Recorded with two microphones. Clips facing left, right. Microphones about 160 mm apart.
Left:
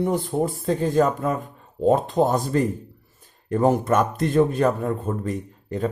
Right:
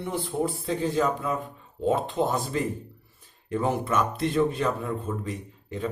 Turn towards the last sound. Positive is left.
turn(degrees=45)  # may be behind; listen again after turning